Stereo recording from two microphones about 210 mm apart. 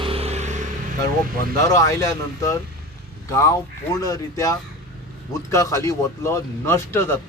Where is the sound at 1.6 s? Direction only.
15° left (ahead or behind).